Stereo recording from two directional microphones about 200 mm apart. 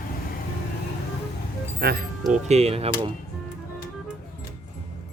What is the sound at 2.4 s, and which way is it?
Speech, 30° right (ahead or behind).